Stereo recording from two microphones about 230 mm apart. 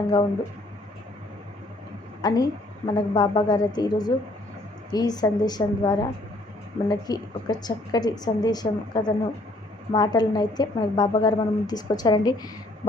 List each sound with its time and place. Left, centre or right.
2.2 s a woman's voice: centre